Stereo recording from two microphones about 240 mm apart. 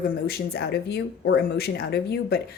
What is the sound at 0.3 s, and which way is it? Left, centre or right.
Speech, left.